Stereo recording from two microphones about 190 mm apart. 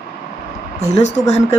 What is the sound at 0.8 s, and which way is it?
Speech, 35° left (ahead or behind).